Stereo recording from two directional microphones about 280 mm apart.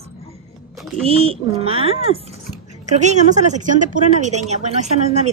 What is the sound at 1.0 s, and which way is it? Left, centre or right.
A woman's voice, right.